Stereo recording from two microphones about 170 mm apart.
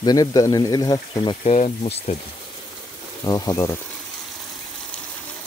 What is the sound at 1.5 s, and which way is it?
Speech, 40° left (ahead or behind).